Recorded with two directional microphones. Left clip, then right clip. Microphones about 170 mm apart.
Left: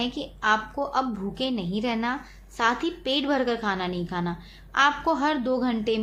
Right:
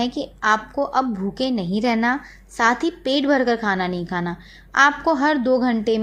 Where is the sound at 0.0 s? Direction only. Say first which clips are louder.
Right 5 dB; 30° right (ahead or behind).